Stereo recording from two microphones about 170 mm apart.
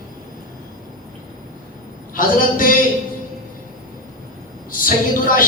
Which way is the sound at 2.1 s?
55° left (ahead or behind).